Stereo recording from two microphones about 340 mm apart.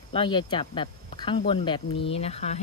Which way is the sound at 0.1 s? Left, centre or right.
Centre.